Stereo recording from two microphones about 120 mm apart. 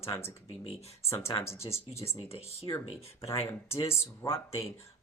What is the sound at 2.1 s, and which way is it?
Speech, 60° left (ahead or behind).